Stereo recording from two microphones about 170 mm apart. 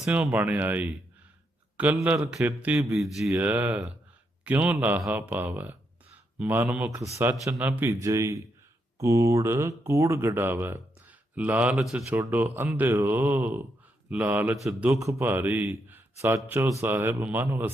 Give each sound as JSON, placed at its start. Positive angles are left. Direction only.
{"t": 0.0, "sound": "a man's voice", "side_deg": -10}
{"t": 14.8, "sound": "a man's voice", "side_deg": -20}